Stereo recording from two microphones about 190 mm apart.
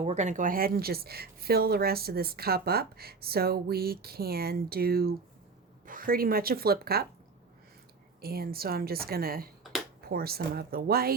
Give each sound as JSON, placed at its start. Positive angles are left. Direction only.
{"t": 0.0, "sound": "speech", "side_deg": -35}
{"t": 8.2, "sound": "speech", "side_deg": -55}